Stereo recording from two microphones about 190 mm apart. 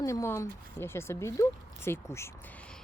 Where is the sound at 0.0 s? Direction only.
15° left (ahead or behind).